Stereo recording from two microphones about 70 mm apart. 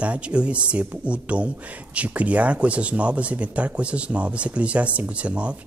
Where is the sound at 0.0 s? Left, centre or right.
Centre.